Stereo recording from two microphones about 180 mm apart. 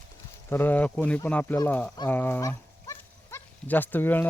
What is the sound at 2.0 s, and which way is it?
Livestock, 10° left (ahead or behind).